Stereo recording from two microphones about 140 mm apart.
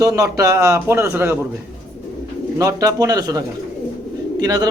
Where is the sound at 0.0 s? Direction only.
20° right (ahead or behind).